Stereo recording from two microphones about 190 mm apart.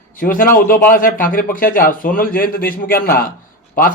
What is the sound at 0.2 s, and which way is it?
A man's voice, 45° left (ahead or behind).